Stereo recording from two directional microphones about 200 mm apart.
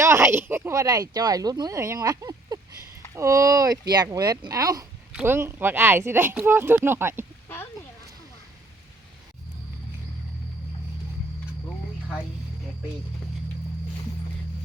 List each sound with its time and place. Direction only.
0.0 s speech: 15° right (ahead or behind)